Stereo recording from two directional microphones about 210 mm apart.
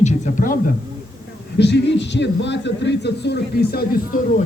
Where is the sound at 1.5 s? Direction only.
55° left (ahead or behind).